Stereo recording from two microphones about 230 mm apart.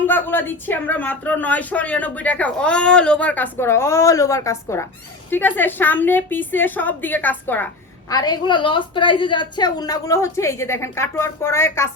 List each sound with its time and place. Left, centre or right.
0.0 s speech: centre